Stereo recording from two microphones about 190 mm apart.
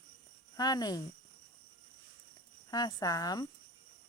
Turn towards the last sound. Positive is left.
turn(degrees=20)  # may be behind; listen again after turning